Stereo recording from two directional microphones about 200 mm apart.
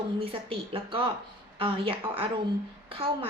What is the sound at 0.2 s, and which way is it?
A woman's voice, 25° right (ahead or behind).